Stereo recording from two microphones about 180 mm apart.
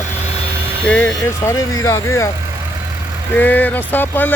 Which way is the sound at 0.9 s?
10° left (ahead or behind).